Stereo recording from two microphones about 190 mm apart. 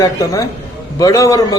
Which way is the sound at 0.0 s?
15° left (ahead or behind).